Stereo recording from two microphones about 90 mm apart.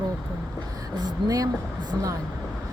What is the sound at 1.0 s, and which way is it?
Speech, 45° right (ahead or behind).